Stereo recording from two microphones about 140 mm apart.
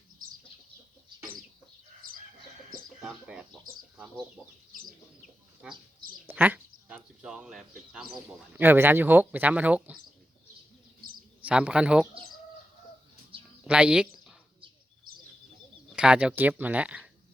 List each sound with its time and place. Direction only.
2.0 s chicken: 90° right
3.0 s speech: 5° right (ahead or behind)
5.6 s speech: 5° right (ahead or behind)
8.5 s speech: 15° right (ahead or behind)
11.4 s speech: 10° right (ahead or behind)
13.7 s speech: 10° right (ahead or behind)
15.9 s speech: 5° right (ahead or behind)